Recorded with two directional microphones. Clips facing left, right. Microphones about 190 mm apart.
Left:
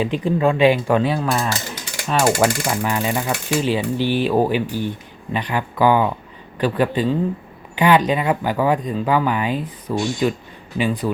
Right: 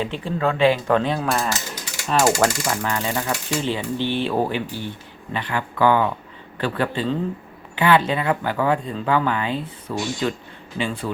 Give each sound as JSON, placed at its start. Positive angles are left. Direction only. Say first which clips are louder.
{"t": 0.0, "sound": "speech", "louder": "left 5 dB", "side_deg": 15}
{"t": 2.6, "sound": "speech", "louder": "left 3 dB", "side_deg": 15}